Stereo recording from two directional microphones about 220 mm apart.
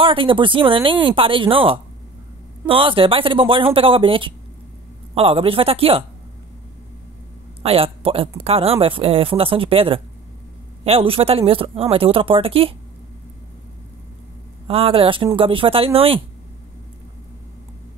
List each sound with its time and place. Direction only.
0.0 s speech: 25° right (ahead or behind)
7.6 s speech: 25° right (ahead or behind)
14.7 s speech: 25° right (ahead or behind)